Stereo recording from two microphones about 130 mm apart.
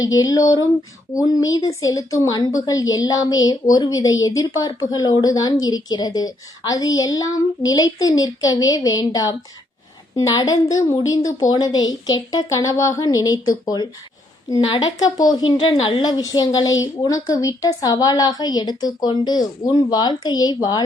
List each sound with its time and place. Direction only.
0.0 s a woman's voice: 30° left (ahead or behind)